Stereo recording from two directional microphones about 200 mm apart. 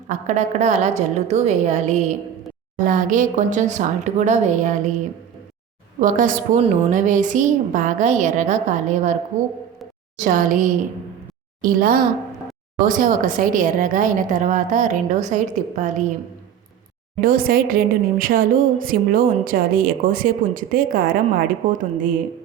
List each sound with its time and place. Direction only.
0.1 s a woman's voice: 35° right (ahead or behind)
6.0 s a woman's voice: 40° right (ahead or behind)
10.2 s a woman's voice: 40° right (ahead or behind)
17.2 s a woman's voice: 45° right (ahead or behind)